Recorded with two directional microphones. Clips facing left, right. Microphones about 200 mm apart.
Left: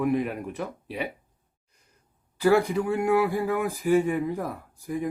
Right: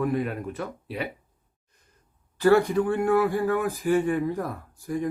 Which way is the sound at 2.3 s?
10° left (ahead or behind).